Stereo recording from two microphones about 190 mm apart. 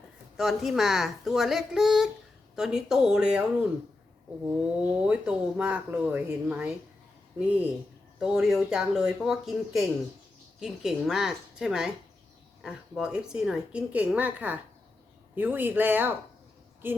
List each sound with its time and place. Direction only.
0.3 s a woman's voice: centre (ahead or behind)